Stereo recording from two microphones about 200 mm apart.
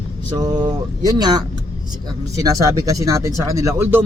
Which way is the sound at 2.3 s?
15° right (ahead or behind).